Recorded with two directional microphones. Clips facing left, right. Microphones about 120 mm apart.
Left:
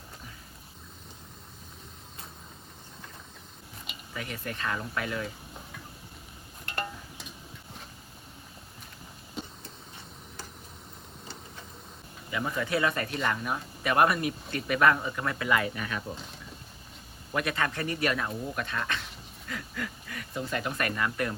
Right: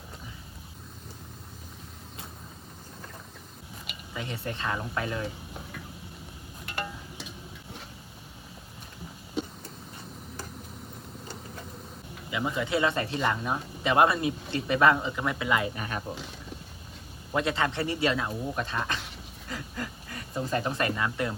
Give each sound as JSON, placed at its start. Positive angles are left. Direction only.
{"t": 4.1, "sound": "speech", "side_deg": -25}
{"t": 12.3, "sound": "speech", "side_deg": -15}
{"t": 15.7, "sound": "speech", "side_deg": -35}
{"t": 17.3, "sound": "speech", "side_deg": -25}